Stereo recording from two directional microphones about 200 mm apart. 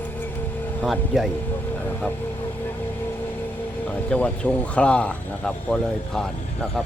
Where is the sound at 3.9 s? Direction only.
5° left (ahead or behind).